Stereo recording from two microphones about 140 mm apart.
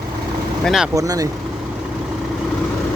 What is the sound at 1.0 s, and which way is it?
Speech, 25° right (ahead or behind).